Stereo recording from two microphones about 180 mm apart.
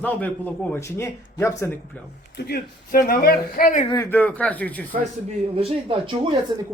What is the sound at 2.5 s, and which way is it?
Speech, 55° left (ahead or behind).